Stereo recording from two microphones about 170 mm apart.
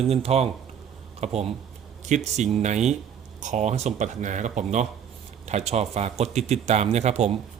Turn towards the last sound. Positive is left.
turn(degrees=-40)  # may be behind; listen again after turning